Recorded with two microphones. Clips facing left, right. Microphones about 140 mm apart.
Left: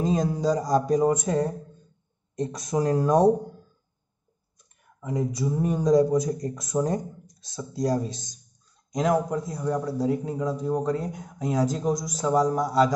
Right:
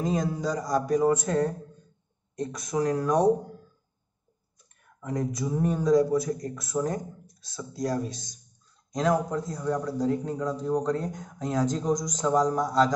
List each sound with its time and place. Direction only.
0.0 s speech: 25° left (ahead or behind)
5.0 s a sound: 5° left (ahead or behind)
5.7 s speech: 20° left (ahead or behind)
8.9 s a man's voice: 10° left (ahead or behind)